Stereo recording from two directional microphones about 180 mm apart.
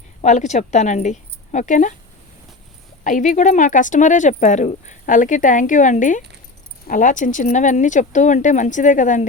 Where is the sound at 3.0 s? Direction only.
45° left (ahead or behind).